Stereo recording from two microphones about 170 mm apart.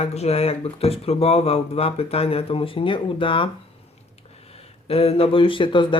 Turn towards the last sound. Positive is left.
turn(degrees=30)  # may be behind; listen again after turning